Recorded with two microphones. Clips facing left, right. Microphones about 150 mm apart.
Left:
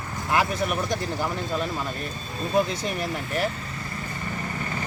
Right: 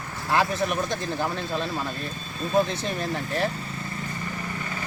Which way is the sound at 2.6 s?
15° left (ahead or behind).